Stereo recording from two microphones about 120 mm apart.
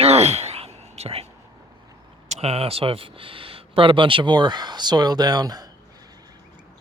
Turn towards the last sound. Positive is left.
turn(degrees=-35)  # may be behind; listen again after turning